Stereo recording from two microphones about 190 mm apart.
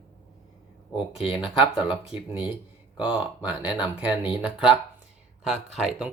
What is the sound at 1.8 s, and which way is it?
Speech, 5° right (ahead or behind).